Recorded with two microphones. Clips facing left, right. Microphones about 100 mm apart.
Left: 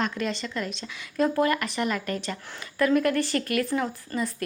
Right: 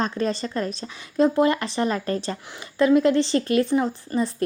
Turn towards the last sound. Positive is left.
turn(degrees=-25)  # may be behind; listen again after turning